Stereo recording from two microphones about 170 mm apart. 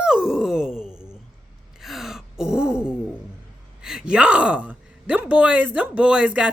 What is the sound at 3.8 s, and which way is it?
Speech, 5° right (ahead or behind).